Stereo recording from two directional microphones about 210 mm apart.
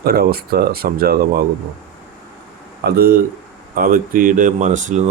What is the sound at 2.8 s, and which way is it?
Speech, 45° right (ahead or behind).